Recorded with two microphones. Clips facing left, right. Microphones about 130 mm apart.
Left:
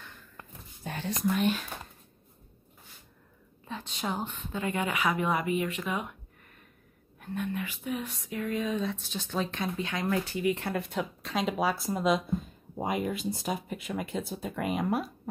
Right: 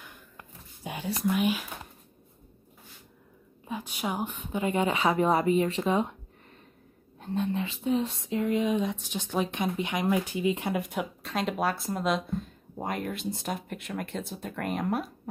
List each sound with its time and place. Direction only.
0.8 s speech: 10° right (ahead or behind)
3.6 s a woman's voice: 10° right (ahead or behind); by 6.1 s 30° right (ahead or behind)
7.2 s speech: 25° right (ahead or behind); by 11.3 s 10° right (ahead or behind)
11.3 s speech: centre (ahead or behind)